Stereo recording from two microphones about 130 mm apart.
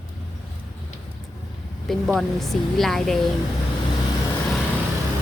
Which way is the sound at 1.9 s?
Centre (ahead or behind).